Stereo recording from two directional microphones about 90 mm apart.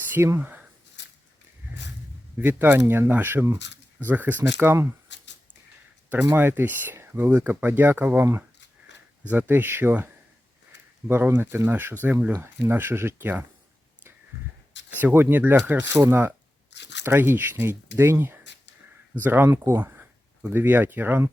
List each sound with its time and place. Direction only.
0.1 s speech: 25° right (ahead or behind)
2.4 s speech: 25° right (ahead or behind)
6.3 s speech: 25° right (ahead or behind)
11.1 s speech: 25° right (ahead or behind)
15.0 s speech: 25° right (ahead or behind)
19.5 s speech: 30° right (ahead or behind)